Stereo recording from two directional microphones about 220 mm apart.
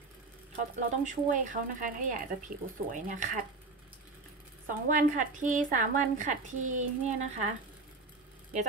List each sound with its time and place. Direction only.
0.8 s a woman's voice: 35° right (ahead or behind)
4.6 s a woman's voice: 35° right (ahead or behind)